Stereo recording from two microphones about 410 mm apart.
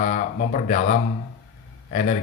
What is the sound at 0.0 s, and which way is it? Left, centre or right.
A man's voice, centre.